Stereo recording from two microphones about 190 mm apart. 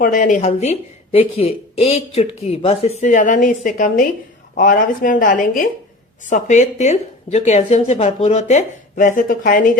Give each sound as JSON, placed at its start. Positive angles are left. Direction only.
{"t": 0.0, "sound": "a woman's voice", "side_deg": 45}